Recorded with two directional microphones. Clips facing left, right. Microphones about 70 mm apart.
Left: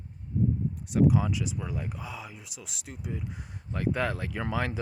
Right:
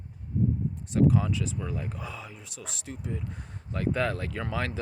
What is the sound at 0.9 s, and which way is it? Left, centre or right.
Speech, centre.